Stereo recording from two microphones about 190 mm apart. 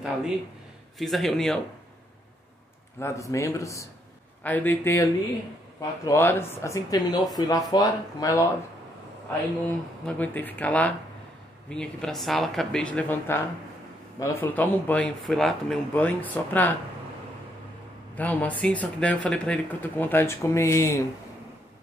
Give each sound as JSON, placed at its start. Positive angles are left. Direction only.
{"t": 0.9, "sound": "speech", "side_deg": 0}
{"t": 3.0, "sound": "speech", "side_deg": 15}
{"t": 9.7, "sound": "speech", "side_deg": 10}
{"t": 18.1, "sound": "speech", "side_deg": 10}